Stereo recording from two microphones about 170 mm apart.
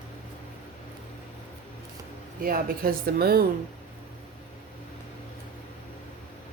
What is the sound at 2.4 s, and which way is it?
A woman's voice, 60° right (ahead or behind).